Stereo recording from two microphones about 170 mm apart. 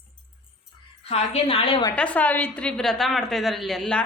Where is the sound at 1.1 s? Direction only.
35° left (ahead or behind).